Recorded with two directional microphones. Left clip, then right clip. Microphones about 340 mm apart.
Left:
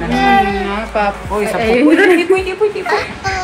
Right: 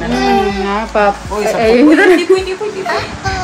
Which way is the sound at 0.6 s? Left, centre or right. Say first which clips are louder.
Right 3 dB; right.